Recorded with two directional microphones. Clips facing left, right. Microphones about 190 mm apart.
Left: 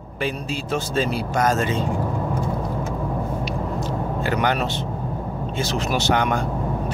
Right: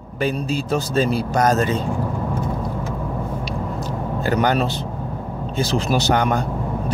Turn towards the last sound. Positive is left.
turn(degrees=-40)  # may be behind; listen again after turning